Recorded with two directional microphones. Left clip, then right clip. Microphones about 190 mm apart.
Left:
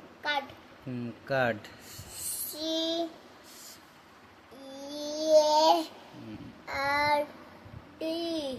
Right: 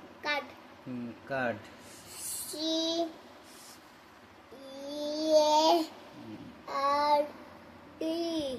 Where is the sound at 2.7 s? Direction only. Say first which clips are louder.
Left 1 dB; centre (ahead or behind).